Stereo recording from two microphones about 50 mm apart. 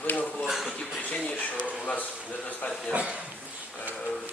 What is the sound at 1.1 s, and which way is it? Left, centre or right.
A man's voice, left.